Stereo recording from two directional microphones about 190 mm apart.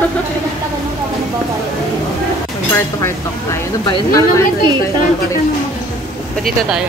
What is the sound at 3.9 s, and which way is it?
Speech, 15° left (ahead or behind).